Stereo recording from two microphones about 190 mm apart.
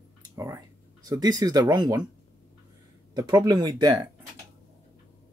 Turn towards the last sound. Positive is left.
turn(degrees=-20)  # may be behind; listen again after turning